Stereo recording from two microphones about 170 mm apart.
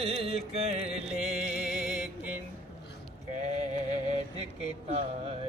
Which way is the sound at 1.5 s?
5° right (ahead or behind).